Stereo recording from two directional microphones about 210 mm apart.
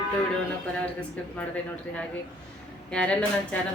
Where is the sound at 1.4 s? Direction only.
5° left (ahead or behind).